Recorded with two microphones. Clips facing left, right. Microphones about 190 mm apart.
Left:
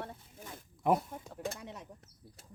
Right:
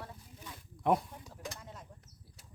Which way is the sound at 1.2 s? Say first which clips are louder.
Left 6 dB; 55° left (ahead or behind).